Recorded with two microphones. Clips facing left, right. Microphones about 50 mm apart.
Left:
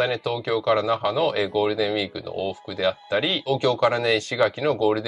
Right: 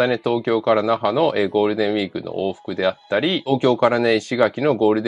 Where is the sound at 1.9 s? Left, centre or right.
Right.